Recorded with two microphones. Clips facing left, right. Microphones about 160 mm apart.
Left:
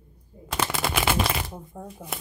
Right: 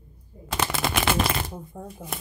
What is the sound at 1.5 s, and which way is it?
Speech, centre (ahead or behind).